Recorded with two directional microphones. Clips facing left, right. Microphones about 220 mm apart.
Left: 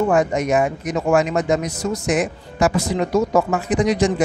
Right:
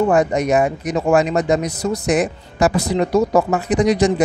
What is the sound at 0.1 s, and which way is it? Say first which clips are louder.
Speech: right 2 dB; 35° right (ahead or behind).